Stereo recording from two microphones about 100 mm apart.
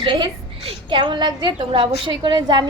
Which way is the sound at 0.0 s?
55° right (ahead or behind).